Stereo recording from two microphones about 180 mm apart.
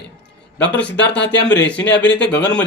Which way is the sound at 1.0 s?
75° left (ahead or behind).